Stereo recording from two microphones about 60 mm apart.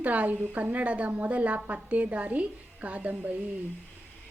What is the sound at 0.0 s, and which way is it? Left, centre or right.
A woman's voice, right.